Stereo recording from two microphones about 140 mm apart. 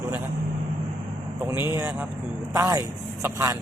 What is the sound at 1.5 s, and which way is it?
Speech, 15° right (ahead or behind).